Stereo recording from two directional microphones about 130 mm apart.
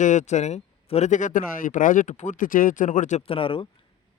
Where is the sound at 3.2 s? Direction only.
45° left (ahead or behind).